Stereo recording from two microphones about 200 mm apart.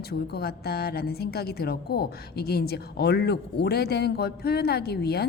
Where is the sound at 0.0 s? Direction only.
50° left (ahead or behind).